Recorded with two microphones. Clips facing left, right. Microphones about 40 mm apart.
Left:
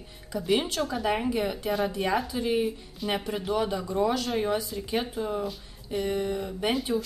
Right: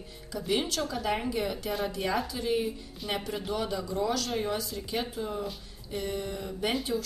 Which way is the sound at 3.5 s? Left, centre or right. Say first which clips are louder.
Left 5 dB; left.